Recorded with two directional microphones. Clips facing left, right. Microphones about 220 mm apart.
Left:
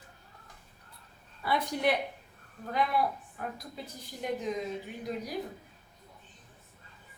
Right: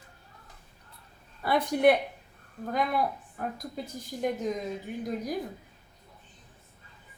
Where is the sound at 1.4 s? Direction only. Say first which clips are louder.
Right 6 dB; 50° right (ahead or behind).